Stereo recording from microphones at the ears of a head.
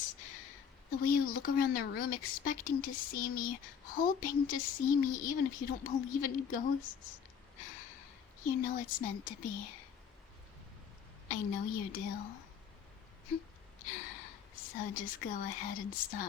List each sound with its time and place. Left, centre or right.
0.0 s a woman's voice: left
11.3 s a woman's voice: left